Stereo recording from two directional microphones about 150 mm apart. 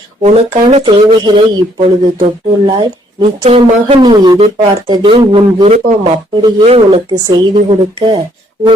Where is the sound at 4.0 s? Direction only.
30° right (ahead or behind).